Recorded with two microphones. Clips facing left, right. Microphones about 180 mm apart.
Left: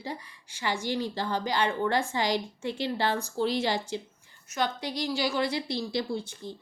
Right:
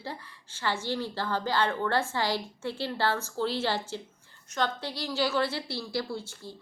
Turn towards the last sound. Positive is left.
turn(degrees=20)  # may be behind; listen again after turning